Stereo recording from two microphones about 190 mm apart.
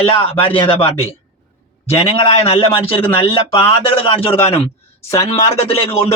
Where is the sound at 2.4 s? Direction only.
30° left (ahead or behind).